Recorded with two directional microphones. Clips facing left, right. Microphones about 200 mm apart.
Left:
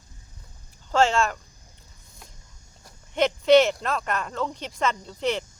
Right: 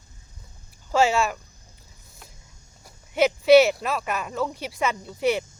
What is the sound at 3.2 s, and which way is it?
Speech, 10° right (ahead or behind).